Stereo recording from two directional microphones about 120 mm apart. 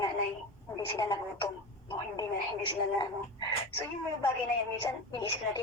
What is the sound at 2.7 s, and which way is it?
Speech, 40° left (ahead or behind).